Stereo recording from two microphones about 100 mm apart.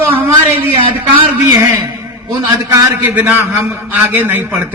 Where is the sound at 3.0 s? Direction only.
20° right (ahead or behind).